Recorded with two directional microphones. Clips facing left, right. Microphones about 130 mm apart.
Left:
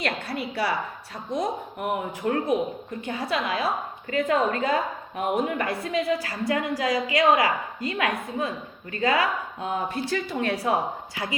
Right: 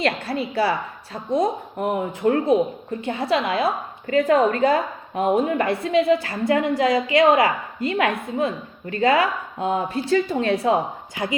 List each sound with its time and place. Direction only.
0.0 s a woman's voice: 30° right (ahead or behind)